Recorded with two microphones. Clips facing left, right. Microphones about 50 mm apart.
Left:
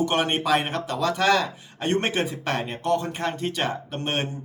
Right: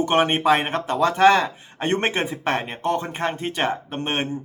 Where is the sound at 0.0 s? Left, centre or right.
Right.